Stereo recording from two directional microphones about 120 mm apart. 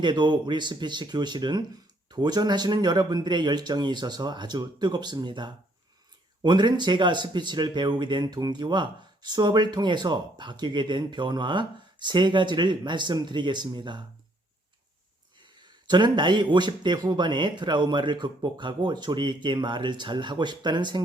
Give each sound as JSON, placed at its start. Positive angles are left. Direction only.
{"t": 0.0, "sound": "speech", "side_deg": -40}
{"t": 15.4, "sound": "speech", "side_deg": -40}